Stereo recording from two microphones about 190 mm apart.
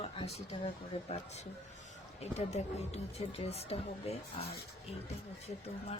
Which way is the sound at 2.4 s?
35° left (ahead or behind).